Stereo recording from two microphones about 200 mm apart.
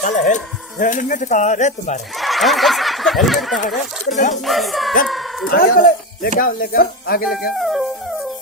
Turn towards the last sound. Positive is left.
turn(degrees=0)  # may be behind; listen again after turning